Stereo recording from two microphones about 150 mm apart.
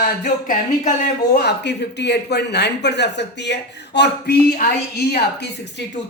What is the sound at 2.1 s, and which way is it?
Speech, 90° left.